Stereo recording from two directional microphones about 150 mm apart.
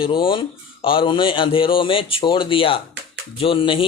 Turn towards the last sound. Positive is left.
turn(degrees=35)  # may be behind; listen again after turning